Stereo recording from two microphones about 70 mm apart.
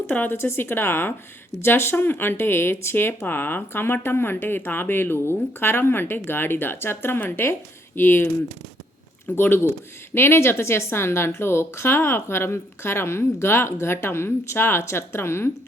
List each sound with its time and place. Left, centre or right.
0.1 s speech: left